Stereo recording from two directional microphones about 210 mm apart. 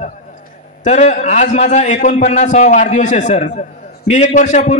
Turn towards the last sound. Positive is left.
turn(degrees=35)  # may be behind; listen again after turning